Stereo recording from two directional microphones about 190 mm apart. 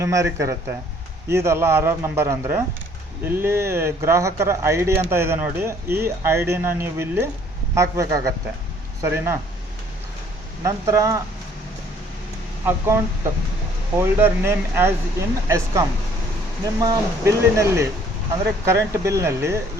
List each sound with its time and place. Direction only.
0.0 s speech: 15° right (ahead or behind)
10.6 s speech: 15° right (ahead or behind)
12.6 s speech: 15° right (ahead or behind)